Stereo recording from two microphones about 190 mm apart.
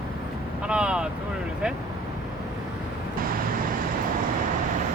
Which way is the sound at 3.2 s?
50° right (ahead or behind).